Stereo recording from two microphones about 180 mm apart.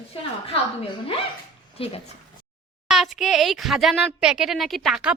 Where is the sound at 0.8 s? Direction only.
30° left (ahead or behind).